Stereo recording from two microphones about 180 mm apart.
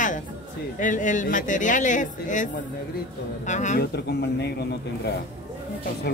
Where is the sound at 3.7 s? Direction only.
65° left (ahead or behind).